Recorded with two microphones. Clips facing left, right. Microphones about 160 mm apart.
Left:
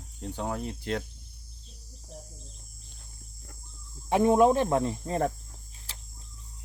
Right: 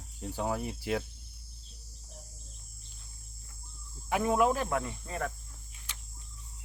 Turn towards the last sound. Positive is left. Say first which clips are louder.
# left 1 dB
turn(degrees=35)  # may be behind; listen again after turning